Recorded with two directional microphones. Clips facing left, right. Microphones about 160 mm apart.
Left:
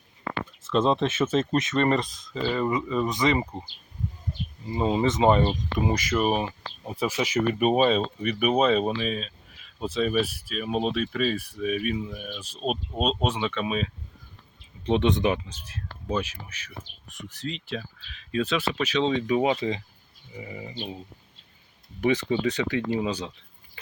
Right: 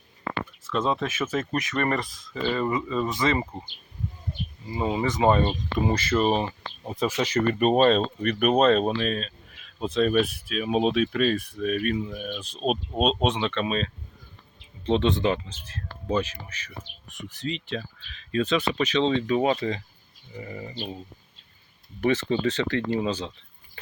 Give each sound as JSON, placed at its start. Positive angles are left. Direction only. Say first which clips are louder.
{"t": 0.6, "sound": "speech", "louder": "left 4 dB", "side_deg": 25}
{"t": 4.6, "sound": "speech", "louder": "left 2 dB", "side_deg": 25}
{"t": 22.0, "sound": "speech", "louder": "even", "side_deg": 15}